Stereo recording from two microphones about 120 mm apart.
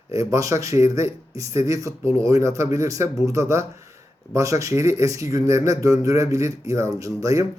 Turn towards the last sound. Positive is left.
turn(degrees=-25)  # may be behind; listen again after turning